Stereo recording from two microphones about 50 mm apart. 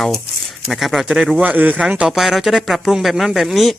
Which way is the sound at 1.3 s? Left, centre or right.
Right.